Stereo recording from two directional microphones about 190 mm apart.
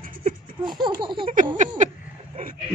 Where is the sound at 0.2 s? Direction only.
25° right (ahead or behind).